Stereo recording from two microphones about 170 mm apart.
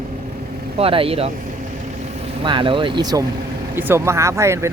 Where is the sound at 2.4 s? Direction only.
30° right (ahead or behind).